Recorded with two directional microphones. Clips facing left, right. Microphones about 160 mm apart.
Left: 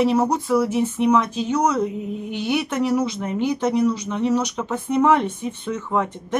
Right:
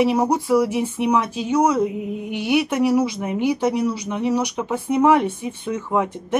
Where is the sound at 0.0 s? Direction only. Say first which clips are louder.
Right 1 dB; 10° right (ahead or behind).